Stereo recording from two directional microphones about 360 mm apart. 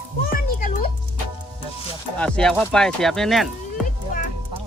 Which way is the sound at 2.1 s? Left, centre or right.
Centre.